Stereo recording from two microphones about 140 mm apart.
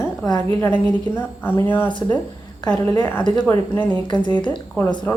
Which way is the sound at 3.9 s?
35° left (ahead or behind).